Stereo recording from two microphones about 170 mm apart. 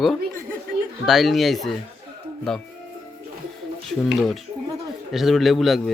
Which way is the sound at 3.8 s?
Centre (ahead or behind).